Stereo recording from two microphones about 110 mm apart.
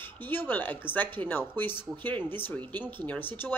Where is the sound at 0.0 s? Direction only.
20° left (ahead or behind).